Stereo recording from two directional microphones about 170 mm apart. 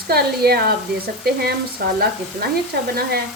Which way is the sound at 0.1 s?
65° right (ahead or behind).